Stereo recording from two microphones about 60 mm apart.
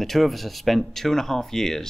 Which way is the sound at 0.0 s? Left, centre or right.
Centre.